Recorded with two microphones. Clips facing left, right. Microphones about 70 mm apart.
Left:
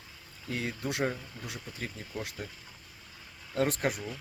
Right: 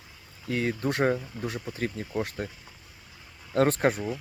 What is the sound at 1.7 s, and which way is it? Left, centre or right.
Speech, right.